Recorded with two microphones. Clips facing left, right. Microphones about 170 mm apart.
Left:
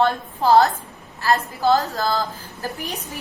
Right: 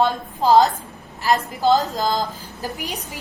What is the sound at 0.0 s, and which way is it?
A woman's voice, 15° right (ahead or behind).